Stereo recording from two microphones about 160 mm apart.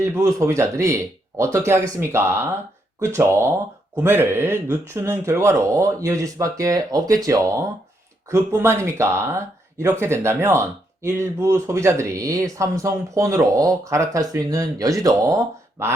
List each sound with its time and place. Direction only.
0.0 s speech: 20° right (ahead or behind)